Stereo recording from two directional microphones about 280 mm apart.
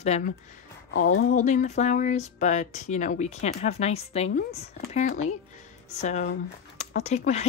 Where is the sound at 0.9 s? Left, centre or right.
Left.